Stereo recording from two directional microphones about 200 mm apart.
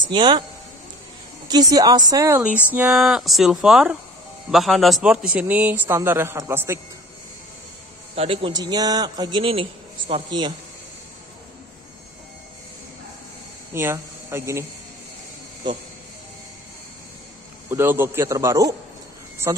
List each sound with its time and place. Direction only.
0.0 s speech: 25° right (ahead or behind)
1.5 s a man's voice: 20° right (ahead or behind)
8.2 s a man's voice: 25° right (ahead or behind)
13.7 s speech: 10° right (ahead or behind)
17.6 s a man's voice: 10° right (ahead or behind)